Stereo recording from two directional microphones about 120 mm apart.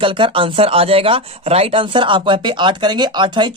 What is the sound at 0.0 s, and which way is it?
Speech, 45° right (ahead or behind).